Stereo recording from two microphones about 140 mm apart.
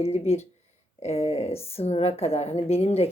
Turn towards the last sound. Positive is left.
turn(degrees=45)  # may be behind; listen again after turning